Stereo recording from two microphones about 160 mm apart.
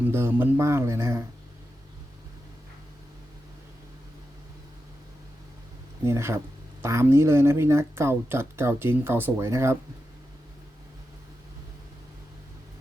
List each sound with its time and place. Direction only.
0.1 s speech: 15° right (ahead or behind)
6.1 s speech: 15° right (ahead or behind)